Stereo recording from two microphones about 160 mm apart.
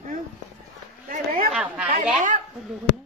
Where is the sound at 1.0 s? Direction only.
65° right (ahead or behind).